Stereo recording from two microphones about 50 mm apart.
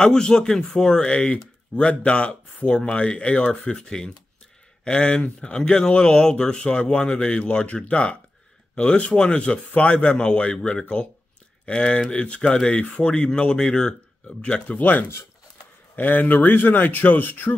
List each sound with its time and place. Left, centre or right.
0.0 s speech: centre
14.8 s speech: left